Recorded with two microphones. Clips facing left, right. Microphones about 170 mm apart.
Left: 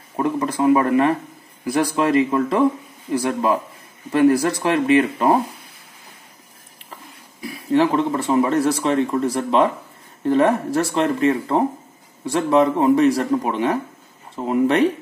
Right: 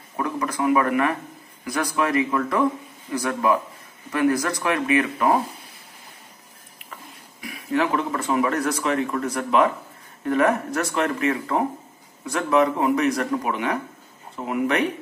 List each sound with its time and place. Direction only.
0.1 s speech: 25° left (ahead or behind)
7.4 s speech: 30° left (ahead or behind)